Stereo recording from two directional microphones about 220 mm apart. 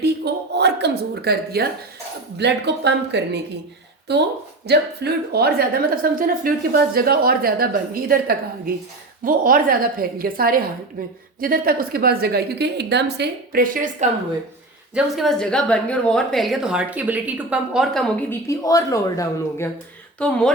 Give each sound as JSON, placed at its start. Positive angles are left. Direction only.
{"t": 0.5, "sound": "a woman's voice", "side_deg": -50}
{"t": 14.9, "sound": "a woman's voice", "side_deg": 0}
{"t": 18.4, "sound": "a woman's voice", "side_deg": 15}